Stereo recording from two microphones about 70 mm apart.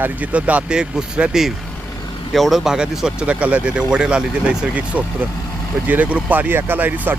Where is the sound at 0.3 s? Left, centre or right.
Centre.